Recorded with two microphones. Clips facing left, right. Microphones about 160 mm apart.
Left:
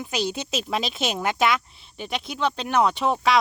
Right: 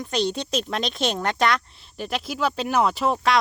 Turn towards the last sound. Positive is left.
turn(degrees=0)  # may be behind; listen again after turning